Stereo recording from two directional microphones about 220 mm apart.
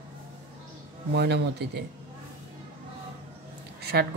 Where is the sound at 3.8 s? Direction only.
45° right (ahead or behind).